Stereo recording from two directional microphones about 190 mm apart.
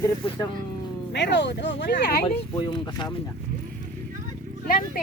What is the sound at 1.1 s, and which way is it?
Speech, 65° left (ahead or behind).